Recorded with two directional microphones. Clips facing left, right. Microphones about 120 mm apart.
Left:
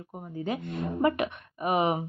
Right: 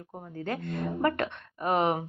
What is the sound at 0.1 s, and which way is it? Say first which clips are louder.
Speech: left 2 dB; 15° left (ahead or behind).